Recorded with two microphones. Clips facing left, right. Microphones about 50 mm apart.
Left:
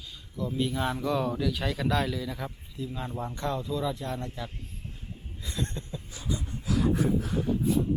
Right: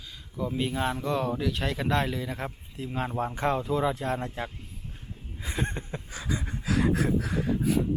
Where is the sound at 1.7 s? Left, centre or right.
Right.